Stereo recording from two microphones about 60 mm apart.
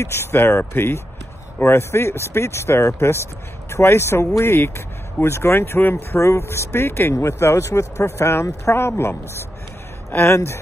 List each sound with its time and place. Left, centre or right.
0.0 s speech: left
6.1 s speech: left